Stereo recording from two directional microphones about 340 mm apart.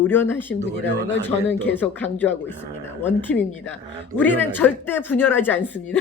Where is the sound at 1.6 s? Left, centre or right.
Centre.